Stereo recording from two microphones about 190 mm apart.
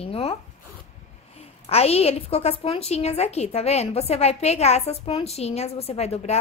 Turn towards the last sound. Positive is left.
turn(degrees=35)  # may be behind; listen again after turning